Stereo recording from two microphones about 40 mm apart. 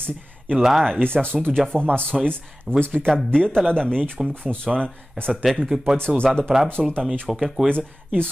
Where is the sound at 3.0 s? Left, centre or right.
Centre.